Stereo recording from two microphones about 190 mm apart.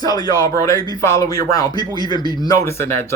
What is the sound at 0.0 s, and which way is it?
Speech, 20° left (ahead or behind).